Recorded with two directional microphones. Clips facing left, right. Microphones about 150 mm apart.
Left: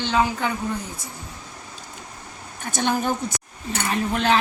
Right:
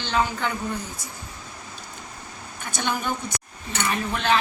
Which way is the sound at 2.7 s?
40° left (ahead or behind).